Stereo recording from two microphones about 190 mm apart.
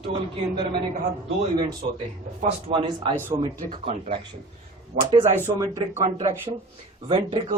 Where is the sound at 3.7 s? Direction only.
35° right (ahead or behind).